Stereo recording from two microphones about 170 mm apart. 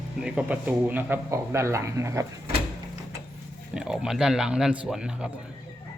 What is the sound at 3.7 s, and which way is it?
Speech, 5° right (ahead or behind).